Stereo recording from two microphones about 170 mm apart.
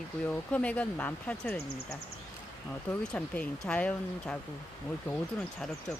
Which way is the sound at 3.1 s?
5° left (ahead or behind).